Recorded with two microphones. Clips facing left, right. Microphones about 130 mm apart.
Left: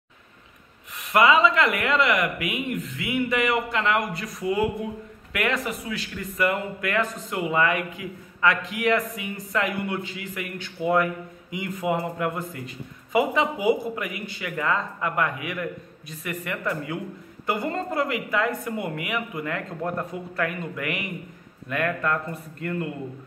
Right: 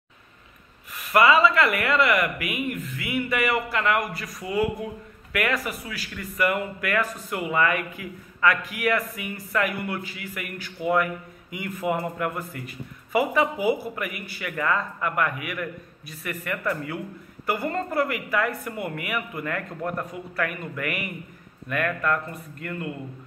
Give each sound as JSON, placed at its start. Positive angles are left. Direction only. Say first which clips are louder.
{"t": 1.1, "sound": "speech", "louder": "even", "side_deg": 20}